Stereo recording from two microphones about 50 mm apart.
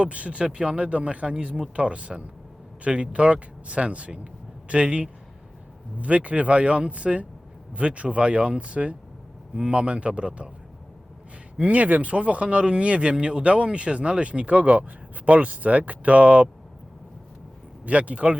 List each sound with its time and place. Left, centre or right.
0.0 s speech: right
11.5 s speech: right
17.8 s speech: right